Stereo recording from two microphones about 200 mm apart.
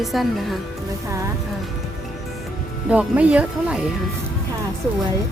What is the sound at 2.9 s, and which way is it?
Speech, 5° right (ahead or behind).